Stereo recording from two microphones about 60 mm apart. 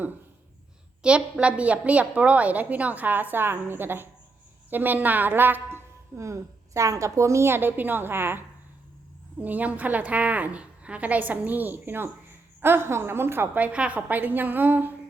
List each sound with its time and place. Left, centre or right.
1.0 s a woman's voice: centre; by 5.8 s right
6.1 s a woman's voice: right
9.4 s a woman's voice: right
13.6 s a woman's voice: right